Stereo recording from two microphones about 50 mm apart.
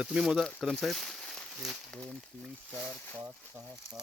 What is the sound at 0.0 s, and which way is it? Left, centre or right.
Speech, centre.